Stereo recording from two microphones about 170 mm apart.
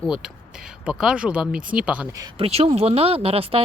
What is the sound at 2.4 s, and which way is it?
Speech, 35° right (ahead or behind).